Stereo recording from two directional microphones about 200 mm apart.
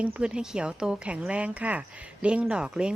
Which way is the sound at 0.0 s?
5° right (ahead or behind).